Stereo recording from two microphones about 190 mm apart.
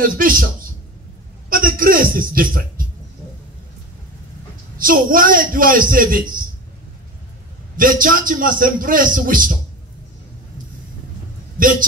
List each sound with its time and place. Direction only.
0.0 s a man's voice: 45° right (ahead or behind)
1.5 s a man's voice: 50° right (ahead or behind)
4.7 s a man's voice: 50° right (ahead or behind)
7.7 s a man's voice: 45° right (ahead or behind)